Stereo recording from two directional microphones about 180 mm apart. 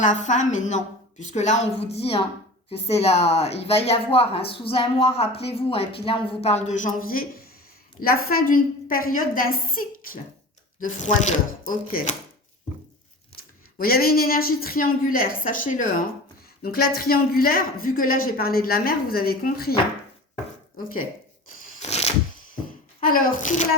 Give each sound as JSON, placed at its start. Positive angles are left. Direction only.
{"t": 0.0, "sound": "a woman's voice", "side_deg": 40}
{"t": 13.7, "sound": "a woman's voice", "side_deg": 60}
{"t": 16.6, "sound": "a woman's voice", "side_deg": 60}
{"t": 21.8, "sound": "a sound", "side_deg": 35}
{"t": 23.0, "sound": "a woman's voice", "side_deg": 50}